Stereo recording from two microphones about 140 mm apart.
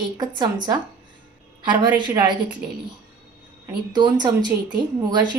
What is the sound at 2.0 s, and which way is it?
Speech, 35° right (ahead or behind).